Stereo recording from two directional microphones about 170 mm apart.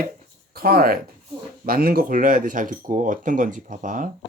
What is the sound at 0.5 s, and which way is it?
Speech, 60° right (ahead or behind).